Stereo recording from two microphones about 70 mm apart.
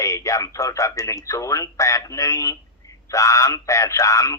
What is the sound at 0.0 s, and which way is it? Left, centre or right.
A man's voice, left.